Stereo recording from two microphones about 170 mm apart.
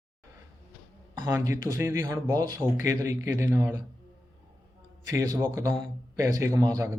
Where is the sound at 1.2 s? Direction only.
20° right (ahead or behind).